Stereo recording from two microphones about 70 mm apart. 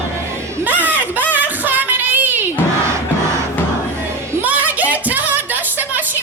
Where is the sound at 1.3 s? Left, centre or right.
Right.